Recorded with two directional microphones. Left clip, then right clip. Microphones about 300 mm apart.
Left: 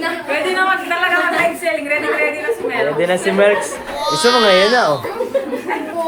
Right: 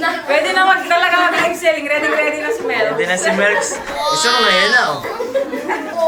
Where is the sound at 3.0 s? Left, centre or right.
Centre.